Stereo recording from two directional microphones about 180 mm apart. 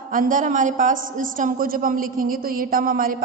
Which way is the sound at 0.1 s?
50° right (ahead or behind).